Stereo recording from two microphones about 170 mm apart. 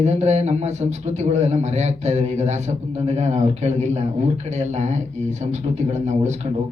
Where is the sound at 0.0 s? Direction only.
40° right (ahead or behind).